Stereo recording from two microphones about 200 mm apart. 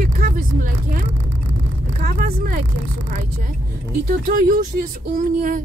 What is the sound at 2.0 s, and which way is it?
Speech, 45° right (ahead or behind).